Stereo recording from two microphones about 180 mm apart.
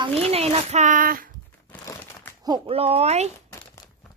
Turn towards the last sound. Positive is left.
turn(degrees=-35)  # may be behind; listen again after turning